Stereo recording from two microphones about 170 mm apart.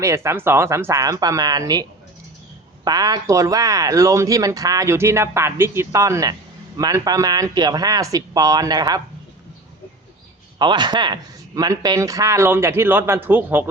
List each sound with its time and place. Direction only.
0.0 s speech: 15° right (ahead or behind)
10.6 s speech: 25° right (ahead or behind)